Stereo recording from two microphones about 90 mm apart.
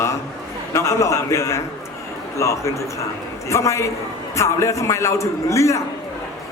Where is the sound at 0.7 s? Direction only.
35° left (ahead or behind).